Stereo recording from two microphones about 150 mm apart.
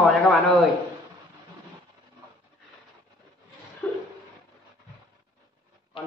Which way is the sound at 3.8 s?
15° left (ahead or behind).